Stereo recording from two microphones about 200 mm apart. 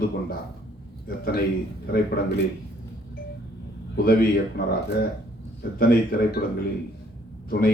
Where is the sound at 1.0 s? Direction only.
50° left (ahead or behind).